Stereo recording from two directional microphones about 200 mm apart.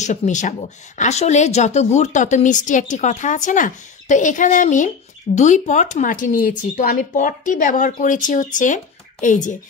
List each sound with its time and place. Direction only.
0.0 s a woman's voice: 35° left (ahead or behind)